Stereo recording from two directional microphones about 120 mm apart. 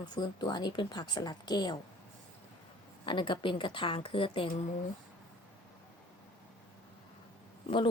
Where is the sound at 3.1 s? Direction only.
45° left (ahead or behind).